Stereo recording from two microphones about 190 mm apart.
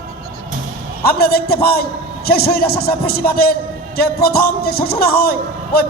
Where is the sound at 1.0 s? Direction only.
55° left (ahead or behind).